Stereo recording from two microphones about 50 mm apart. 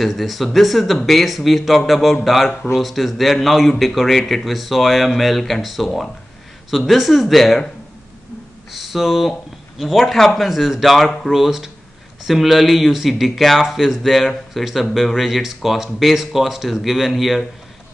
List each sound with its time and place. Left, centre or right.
0.0 s speech: centre
6.9 s speech: centre
8.7 s speech: centre